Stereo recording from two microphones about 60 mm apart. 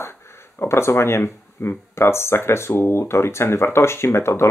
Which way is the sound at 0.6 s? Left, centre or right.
Left.